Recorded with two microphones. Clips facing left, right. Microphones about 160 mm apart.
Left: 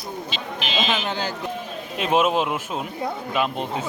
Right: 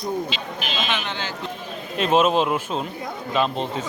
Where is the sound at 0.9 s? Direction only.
40° left (ahead or behind).